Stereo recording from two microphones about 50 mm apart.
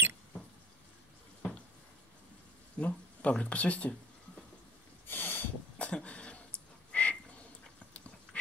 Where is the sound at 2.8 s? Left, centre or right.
Left.